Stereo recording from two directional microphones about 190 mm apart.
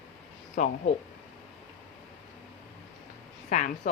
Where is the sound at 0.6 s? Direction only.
45° left (ahead or behind).